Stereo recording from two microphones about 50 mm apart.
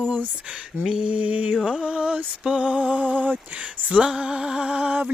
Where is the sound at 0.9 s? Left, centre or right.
Right.